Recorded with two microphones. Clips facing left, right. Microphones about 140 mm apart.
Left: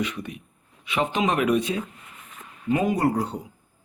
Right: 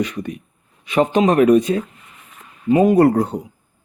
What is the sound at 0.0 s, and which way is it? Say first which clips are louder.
A man's voice: right 6 dB; 40° right (ahead or behind).